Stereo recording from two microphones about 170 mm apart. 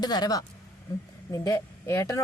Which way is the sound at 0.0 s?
25° left (ahead or behind).